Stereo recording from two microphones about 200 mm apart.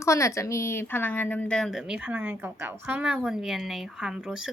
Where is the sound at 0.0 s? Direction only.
15° left (ahead or behind).